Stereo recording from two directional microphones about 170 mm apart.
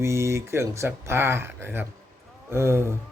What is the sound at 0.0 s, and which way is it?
Speech, 15° right (ahead or behind).